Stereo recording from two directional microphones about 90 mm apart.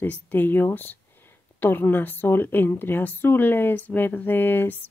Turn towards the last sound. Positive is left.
turn(degrees=20)  # may be behind; listen again after turning